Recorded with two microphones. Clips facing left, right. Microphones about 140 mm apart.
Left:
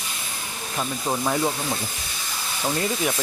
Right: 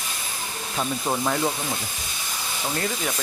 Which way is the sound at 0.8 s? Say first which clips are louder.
Even; centre (ahead or behind).